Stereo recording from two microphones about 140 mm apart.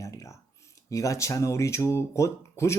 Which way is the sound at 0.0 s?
25° left (ahead or behind).